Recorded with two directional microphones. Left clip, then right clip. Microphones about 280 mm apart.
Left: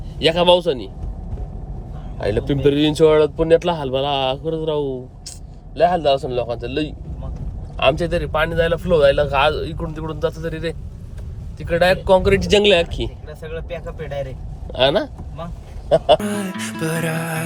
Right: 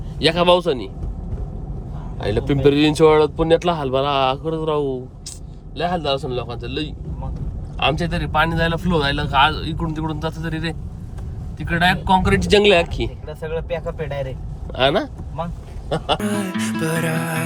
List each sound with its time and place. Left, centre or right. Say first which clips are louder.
0.3 s speech: left 1 dB; centre
2.1 s a man's voice: left 1 dB; centre
12.3 s speech: even; left
12.6 s speech: even; centre
14.7 s speech: left 1 dB; centre